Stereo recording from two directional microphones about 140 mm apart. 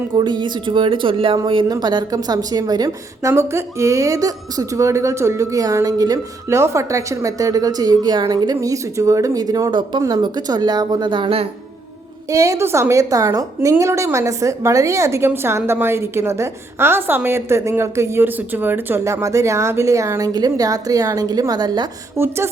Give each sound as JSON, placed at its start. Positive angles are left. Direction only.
{"t": 0.1, "sound": "a woman's voice", "side_deg": -35}
{"t": 12.3, "sound": "a woman's voice", "side_deg": -25}
{"t": 22.2, "sound": "speech", "side_deg": -15}